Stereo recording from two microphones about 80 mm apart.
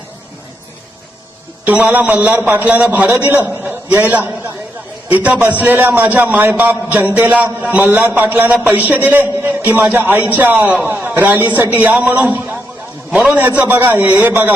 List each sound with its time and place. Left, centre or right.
1.6 s a man's voice: centre
13.6 s a man's voice: right